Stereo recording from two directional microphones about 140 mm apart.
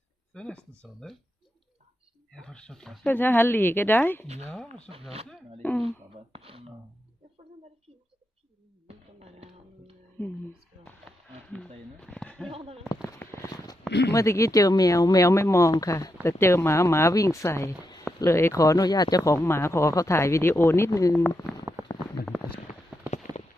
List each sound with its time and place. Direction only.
0.3 s speech: 5° left (ahead or behind)
2.4 s speech: 5° left (ahead or behind)
3.1 s speech: 15° left (ahead or behind)
4.9 s speech: 45° right (ahead or behind)
8.9 s music: 50° right (ahead or behind)
11.9 s a sound: 10° left (ahead or behind)
12.5 s speech: 45° right (ahead or behind)
13.2 s a sound: 15° left (ahead or behind)
14.1 s speech: 20° left (ahead or behind)
21.8 s a sound: 20° right (ahead or behind)
22.2 s a sound: 90° left
23.3 s clip-clop: 50° left (ahead or behind)